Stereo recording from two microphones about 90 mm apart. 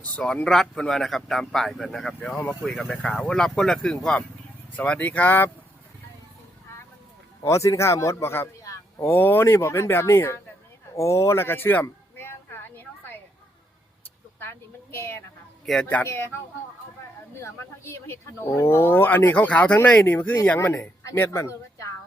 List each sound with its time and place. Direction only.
0.0 s speech: 15° left (ahead or behind)
7.4 s speech: 35° left (ahead or behind)
10.9 s a sound: 30° left (ahead or behind)
14.9 s speech: 25° left (ahead or behind)
15.6 s speech: 5° left (ahead or behind)
16.0 s speech: 25° left (ahead or behind)
17.4 s a man's voice: 30° left (ahead or behind)